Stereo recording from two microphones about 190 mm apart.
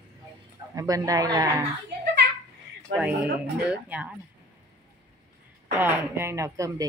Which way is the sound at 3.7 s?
5° right (ahead or behind).